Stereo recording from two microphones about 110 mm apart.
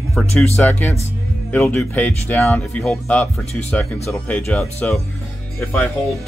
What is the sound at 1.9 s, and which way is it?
Speech, 20° left (ahead or behind).